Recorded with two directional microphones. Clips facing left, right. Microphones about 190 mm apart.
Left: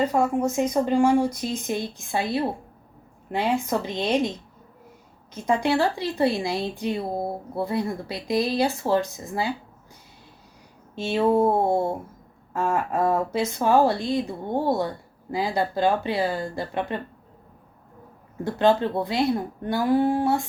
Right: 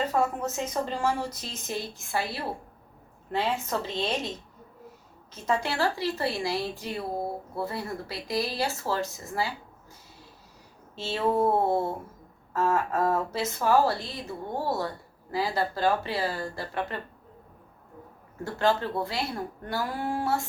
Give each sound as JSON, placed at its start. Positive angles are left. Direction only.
{"t": 0.1, "sound": "speech", "side_deg": 15}
{"t": 5.3, "sound": "speech", "side_deg": 15}
{"t": 10.9, "sound": "speech", "side_deg": 15}
{"t": 18.6, "sound": "speech", "side_deg": 20}